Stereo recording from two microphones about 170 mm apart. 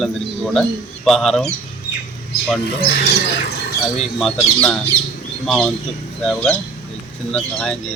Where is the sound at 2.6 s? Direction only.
65° left (ahead or behind).